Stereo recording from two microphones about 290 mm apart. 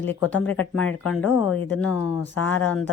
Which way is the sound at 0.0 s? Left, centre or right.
Centre.